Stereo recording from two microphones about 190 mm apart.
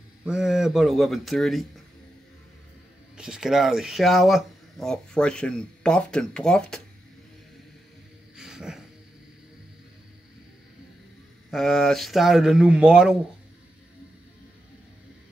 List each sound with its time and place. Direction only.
0.2 s speech: 5° right (ahead or behind)
3.2 s speech: 5° right (ahead or behind)
8.4 s a sound: 5° right (ahead or behind)
11.5 s speech: centre (ahead or behind)